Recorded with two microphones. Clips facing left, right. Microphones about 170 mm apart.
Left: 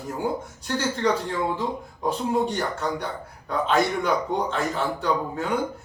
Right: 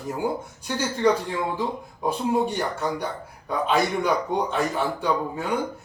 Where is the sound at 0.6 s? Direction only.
10° right (ahead or behind).